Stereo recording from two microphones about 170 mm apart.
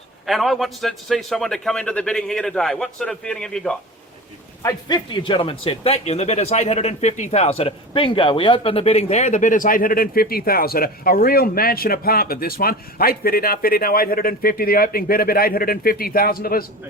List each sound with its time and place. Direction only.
0.3 s a man's voice: centre (ahead or behind)
4.6 s speech: 25° left (ahead or behind); by 16.6 s 60° left (ahead or behind)